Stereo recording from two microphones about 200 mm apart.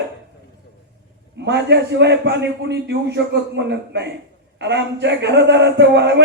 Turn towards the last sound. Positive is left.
turn(degrees=-60)  # may be behind; listen again after turning